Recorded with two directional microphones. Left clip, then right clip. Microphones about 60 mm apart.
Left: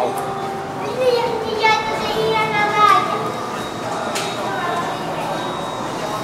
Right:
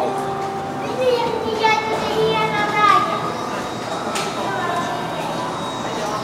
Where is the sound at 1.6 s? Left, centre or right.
Centre.